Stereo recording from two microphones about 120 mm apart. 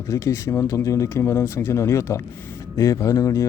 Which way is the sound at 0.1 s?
25° left (ahead or behind).